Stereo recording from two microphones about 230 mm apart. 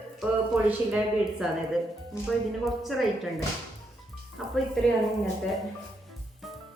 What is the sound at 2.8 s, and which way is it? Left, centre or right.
Speech, centre.